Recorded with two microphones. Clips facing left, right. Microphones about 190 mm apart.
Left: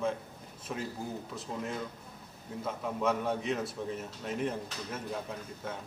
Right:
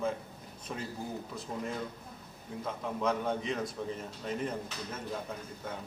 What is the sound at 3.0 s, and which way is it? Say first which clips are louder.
Speech: left 1 dB; 5° left (ahead or behind).